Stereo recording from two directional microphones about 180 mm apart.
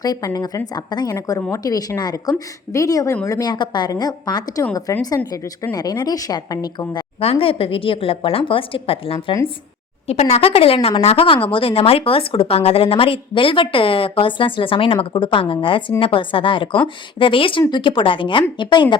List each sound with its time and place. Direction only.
0.0 s a woman's voice: 20° left (ahead or behind)